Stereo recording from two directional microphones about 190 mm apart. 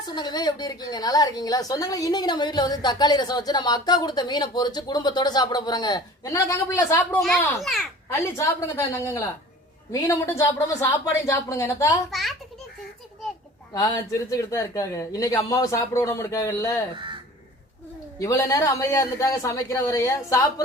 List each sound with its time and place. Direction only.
0.1 s a woman's voice: 20° left (ahead or behind); by 7.9 s centre (ahead or behind)
8.1 s speech: 15° left (ahead or behind)
12.1 s a child's voice: centre (ahead or behind)
13.7 s speech: 20° left (ahead or behind)
18.2 s speech: 15° left (ahead or behind)